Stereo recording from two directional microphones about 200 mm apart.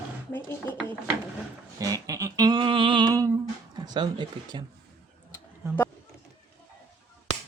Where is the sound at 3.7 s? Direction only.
20° right (ahead or behind).